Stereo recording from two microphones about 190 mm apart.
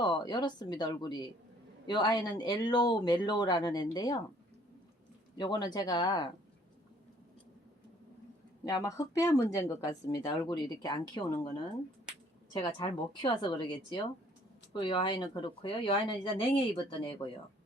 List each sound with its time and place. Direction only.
0.0 s speech: 25° left (ahead or behind)
5.4 s speech: 20° left (ahead or behind)
8.6 s speech: 15° left (ahead or behind)
12.5 s speech: 25° left (ahead or behind)